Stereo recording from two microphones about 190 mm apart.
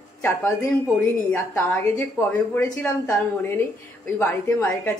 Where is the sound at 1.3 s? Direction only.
10° left (ahead or behind).